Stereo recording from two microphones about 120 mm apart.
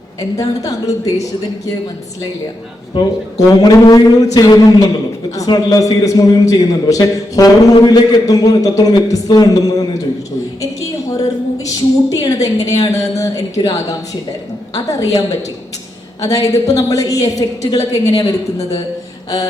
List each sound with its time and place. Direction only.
0.2 s a man's voice: 30° left (ahead or behind)
2.9 s a man's voice: 35° left (ahead or behind)
10.6 s a sound: 30° left (ahead or behind)
11.6 s a man's voice: 30° left (ahead or behind)
16.2 s a man's voice: 30° left (ahead or behind)